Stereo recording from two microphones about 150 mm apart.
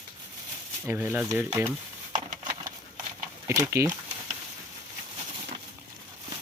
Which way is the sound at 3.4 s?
20° right (ahead or behind).